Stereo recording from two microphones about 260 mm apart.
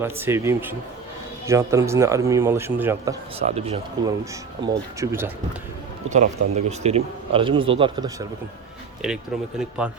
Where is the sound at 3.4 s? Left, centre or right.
Right.